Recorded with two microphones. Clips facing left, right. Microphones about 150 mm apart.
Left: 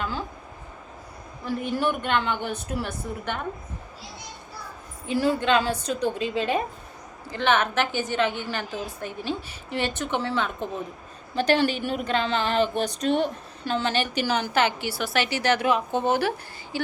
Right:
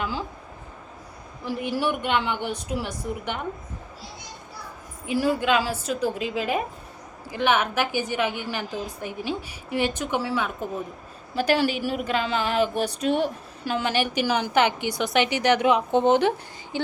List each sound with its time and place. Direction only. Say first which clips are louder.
1.5 s a woman's voice: even; 10° right (ahead or behind)
5.0 s a woman's voice: even; 10° right (ahead or behind)
16.7 s a sound: right 1 dB; 20° right (ahead or behind)